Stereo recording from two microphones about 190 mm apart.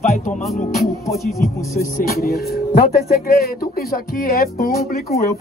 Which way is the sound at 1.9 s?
50° left (ahead or behind).